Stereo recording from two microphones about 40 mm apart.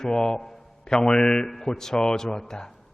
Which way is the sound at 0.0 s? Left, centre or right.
Centre.